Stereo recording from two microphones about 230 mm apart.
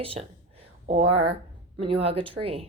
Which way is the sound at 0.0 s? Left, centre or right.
Right.